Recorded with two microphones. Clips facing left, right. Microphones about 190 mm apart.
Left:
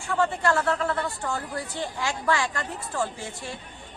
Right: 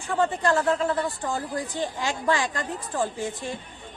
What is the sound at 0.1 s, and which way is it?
Speech, 20° right (ahead or behind).